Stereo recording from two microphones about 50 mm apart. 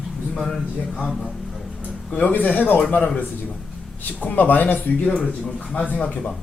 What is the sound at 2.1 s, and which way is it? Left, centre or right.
Speech, left.